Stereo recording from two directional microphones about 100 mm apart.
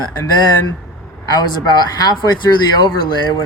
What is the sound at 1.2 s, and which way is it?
Speech, 40° left (ahead or behind).